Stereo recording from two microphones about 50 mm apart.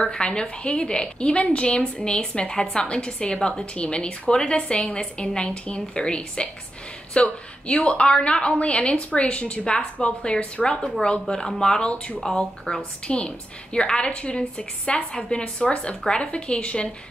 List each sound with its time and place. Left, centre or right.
0.0 s a woman's voice: centre